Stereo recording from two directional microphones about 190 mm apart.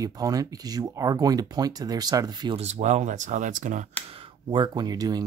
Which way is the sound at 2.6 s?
35° right (ahead or behind).